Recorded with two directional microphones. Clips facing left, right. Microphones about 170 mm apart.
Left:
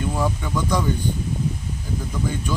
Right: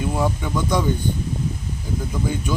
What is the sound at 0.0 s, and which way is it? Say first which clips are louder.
Speech: right 2 dB; 5° right (ahead or behind).